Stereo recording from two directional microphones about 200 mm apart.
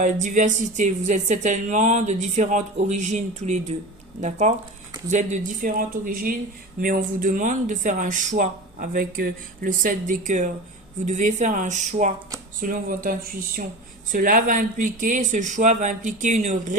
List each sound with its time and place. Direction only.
0.0 s speech: 40° right (ahead or behind)